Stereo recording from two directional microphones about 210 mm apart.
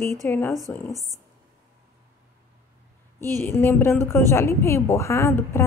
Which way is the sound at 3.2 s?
10° left (ahead or behind).